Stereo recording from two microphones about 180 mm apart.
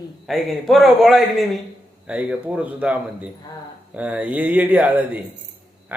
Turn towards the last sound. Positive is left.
turn(degrees=-10)  # may be behind; listen again after turning